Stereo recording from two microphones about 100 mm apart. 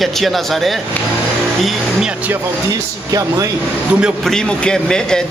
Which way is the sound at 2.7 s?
35° right (ahead or behind).